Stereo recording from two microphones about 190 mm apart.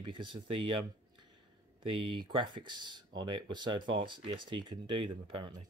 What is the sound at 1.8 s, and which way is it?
Speech, 25° right (ahead or behind).